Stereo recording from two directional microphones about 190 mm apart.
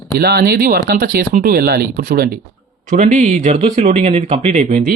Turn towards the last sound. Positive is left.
turn(degrees=-35)  # may be behind; listen again after turning